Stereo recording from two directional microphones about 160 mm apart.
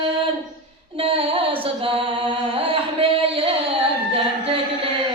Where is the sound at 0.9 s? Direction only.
35° right (ahead or behind).